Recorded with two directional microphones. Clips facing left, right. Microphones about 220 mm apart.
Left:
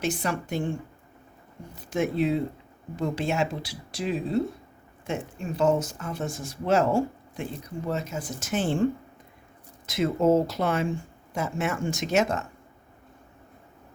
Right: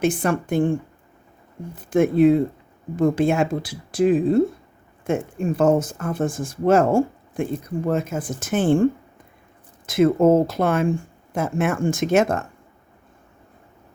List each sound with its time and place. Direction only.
0.0 s speech: 50° right (ahead or behind)
1.8 s speech: 50° right (ahead or behind)